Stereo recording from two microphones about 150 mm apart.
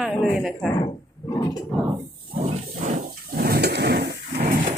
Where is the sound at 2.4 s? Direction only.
50° right (ahead or behind).